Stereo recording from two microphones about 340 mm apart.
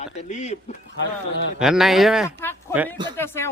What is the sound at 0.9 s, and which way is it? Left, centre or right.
Speech, left.